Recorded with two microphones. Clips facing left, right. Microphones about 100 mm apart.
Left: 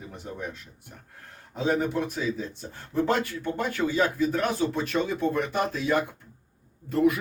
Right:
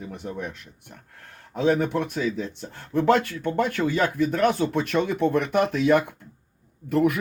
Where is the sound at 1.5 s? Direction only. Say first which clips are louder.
Right 4 dB; 60° right (ahead or behind).